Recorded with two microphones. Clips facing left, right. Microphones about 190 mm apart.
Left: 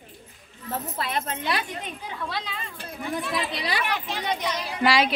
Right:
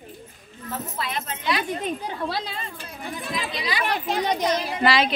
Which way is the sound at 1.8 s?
40° right (ahead or behind).